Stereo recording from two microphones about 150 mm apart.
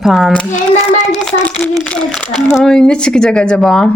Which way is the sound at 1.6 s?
5° left (ahead or behind).